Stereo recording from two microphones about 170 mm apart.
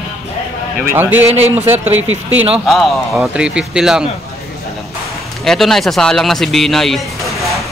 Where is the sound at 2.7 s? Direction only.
5° right (ahead or behind).